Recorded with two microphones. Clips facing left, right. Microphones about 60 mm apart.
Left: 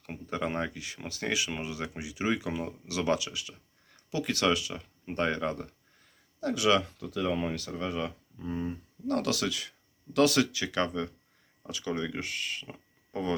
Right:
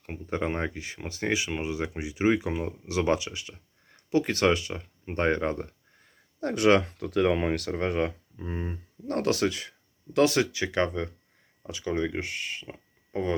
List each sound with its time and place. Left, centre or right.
0.0 s speech: right
8.4 s speech: right; by 13.3 s centre